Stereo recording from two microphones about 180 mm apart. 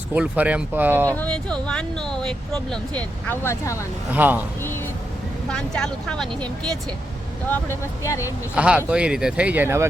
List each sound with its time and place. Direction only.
0.1 s speech: 10° right (ahead or behind)
1.1 s speech: 5° left (ahead or behind)
4.1 s speech: 10° right (ahead or behind)
5.5 s speech: 5° left (ahead or behind)
7.7 s speech: 15° left (ahead or behind)
8.5 s speech: 5° right (ahead or behind)